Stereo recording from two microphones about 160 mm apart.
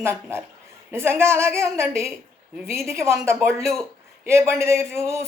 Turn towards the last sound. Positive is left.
turn(degrees=-15)  # may be behind; listen again after turning